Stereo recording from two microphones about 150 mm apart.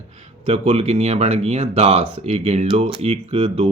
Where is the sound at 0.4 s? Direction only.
40° right (ahead or behind).